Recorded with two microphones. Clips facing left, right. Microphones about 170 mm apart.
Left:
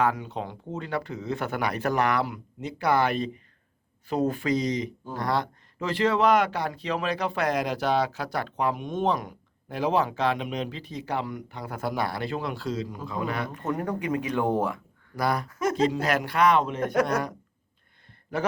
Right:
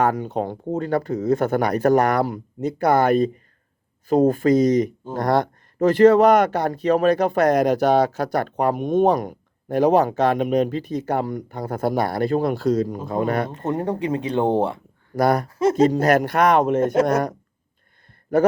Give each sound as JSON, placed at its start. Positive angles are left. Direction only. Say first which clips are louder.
{"t": 0.0, "sound": "speech", "louder": "right 6 dB", "side_deg": -45}
{"t": 13.5, "sound": "speech", "louder": "right 5 dB", "side_deg": -25}
{"t": 15.1, "sound": "speech", "louder": "right 8 dB", "side_deg": -50}
{"t": 15.4, "sound": "speech", "louder": "right 8 dB", "side_deg": -30}
{"t": 15.7, "sound": "speech", "louder": "right 8 dB", "side_deg": -45}
{"t": 16.8, "sound": "speech", "louder": "right 6 dB", "side_deg": -25}
{"t": 17.1, "sound": "speech", "louder": "right 7 dB", "side_deg": -45}